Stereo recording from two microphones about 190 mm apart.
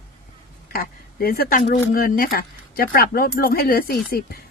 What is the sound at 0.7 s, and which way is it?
A woman's voice, 50° left (ahead or behind).